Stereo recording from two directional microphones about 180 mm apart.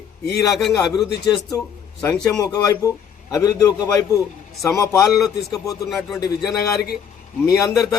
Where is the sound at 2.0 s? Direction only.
20° left (ahead or behind).